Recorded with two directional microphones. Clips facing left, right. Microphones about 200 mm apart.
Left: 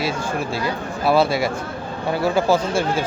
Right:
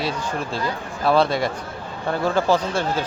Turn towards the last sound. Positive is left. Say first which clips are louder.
# left 2 dB
turn(degrees=10)  # may be behind; listen again after turning